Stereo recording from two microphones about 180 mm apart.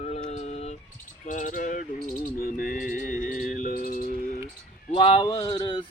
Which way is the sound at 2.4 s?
50° left (ahead or behind).